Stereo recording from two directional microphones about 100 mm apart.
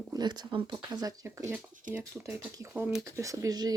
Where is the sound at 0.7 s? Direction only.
40° right (ahead or behind).